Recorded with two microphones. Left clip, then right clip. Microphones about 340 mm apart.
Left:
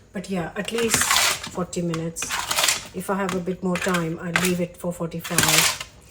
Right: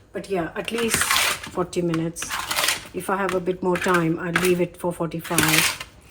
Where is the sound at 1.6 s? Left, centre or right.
Right.